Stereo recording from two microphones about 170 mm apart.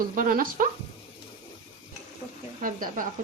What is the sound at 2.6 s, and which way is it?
Speech, 55° right (ahead or behind).